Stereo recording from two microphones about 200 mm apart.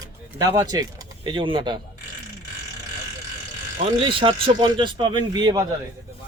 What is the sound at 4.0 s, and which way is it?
Speech, 25° right (ahead or behind).